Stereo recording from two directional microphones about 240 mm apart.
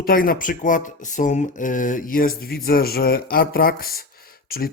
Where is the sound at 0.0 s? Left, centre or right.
Left.